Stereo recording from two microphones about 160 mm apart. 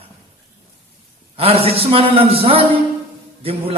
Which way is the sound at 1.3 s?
35° right (ahead or behind).